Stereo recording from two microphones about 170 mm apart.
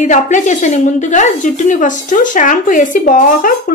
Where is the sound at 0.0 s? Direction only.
45° left (ahead or behind).